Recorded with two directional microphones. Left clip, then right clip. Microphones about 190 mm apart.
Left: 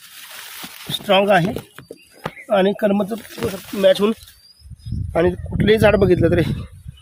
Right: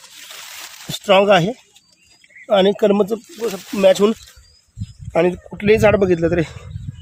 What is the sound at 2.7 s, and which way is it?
Speech, 25° right (ahead or behind).